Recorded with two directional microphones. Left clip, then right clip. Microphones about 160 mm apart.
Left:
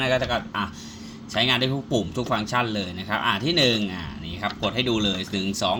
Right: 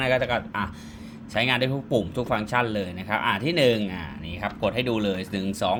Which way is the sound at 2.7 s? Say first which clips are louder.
Even; 5° right (ahead or behind).